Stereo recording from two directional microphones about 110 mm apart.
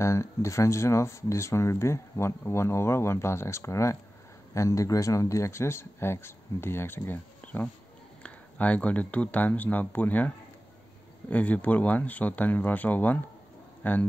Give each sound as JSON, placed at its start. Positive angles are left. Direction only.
{"t": 0.0, "sound": "speech", "side_deg": 25}